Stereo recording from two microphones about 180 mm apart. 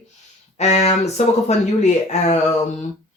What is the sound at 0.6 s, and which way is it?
Speech, 35° left (ahead or behind).